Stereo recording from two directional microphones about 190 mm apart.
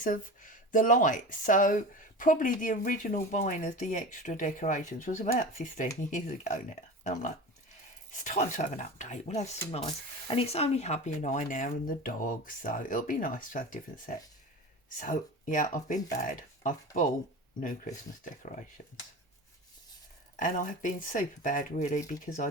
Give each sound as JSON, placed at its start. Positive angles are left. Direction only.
{"t": 0.0, "sound": "speech", "side_deg": 45}
{"t": 20.4, "sound": "speech", "side_deg": 45}